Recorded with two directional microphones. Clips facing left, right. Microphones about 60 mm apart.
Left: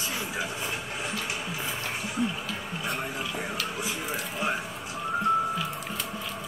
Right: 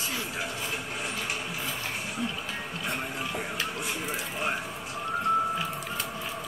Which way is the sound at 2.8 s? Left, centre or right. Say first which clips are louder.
Left 1 dB; centre.